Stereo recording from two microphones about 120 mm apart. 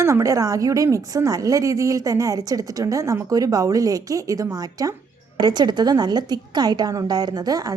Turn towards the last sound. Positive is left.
turn(degrees=-30)  # may be behind; listen again after turning